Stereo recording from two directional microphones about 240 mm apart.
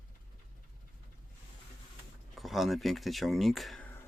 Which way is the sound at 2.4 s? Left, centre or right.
Centre.